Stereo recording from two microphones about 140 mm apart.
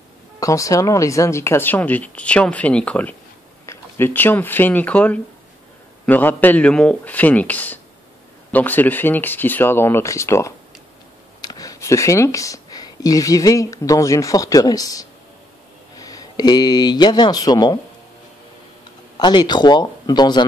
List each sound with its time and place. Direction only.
0.4 s speech: 25° left (ahead or behind)
19.1 s speech: 30° left (ahead or behind)